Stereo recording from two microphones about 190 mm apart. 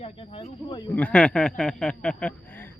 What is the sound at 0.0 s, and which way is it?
Snake, 30° left (ahead or behind).